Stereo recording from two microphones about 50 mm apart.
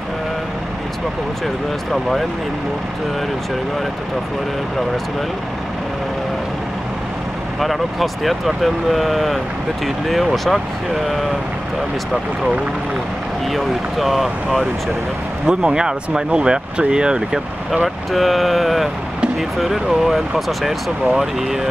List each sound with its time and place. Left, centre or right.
1.9 s speech: centre
7.6 s speech: centre
13.5 s speech: centre
15.4 s speech: centre
17.8 s speech: centre